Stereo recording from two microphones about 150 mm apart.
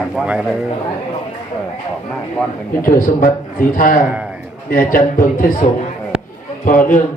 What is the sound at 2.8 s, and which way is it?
A man's voice, 65° left (ahead or behind).